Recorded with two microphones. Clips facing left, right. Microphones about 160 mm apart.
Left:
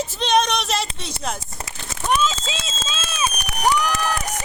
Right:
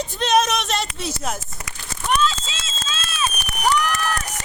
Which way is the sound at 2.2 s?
20° left (ahead or behind).